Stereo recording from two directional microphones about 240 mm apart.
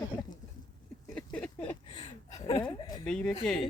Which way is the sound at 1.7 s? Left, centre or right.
Centre.